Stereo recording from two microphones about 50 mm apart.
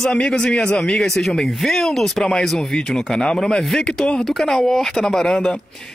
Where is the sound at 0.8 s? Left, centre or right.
Centre.